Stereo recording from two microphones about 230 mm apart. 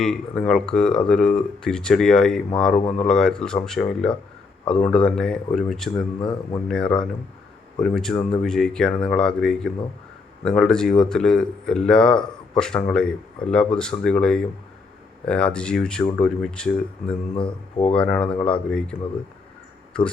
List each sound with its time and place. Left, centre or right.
0.0 s speech: centre
6.1 s speech: centre
6.7 s speech: centre
17.3 s speech: left
17.9 s speech: centre
19.9 s speech: centre